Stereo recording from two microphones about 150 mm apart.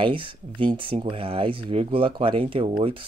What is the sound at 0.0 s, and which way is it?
Speech, 35° right (ahead or behind).